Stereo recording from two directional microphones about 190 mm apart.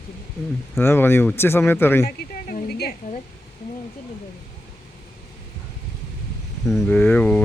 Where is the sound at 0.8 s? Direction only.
10° left (ahead or behind).